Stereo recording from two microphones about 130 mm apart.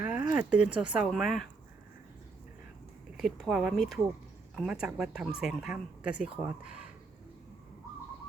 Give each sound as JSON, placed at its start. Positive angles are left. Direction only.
{"t": 0.0, "sound": "speech", "side_deg": -10}
{"t": 3.2, "sound": "speech", "side_deg": 0}